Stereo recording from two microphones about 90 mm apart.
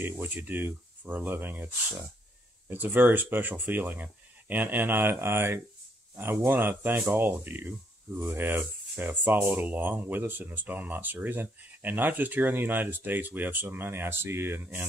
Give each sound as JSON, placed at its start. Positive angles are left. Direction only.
{"t": 0.0, "sound": "speech", "side_deg": -20}
{"t": 2.7, "sound": "speech", "side_deg": -20}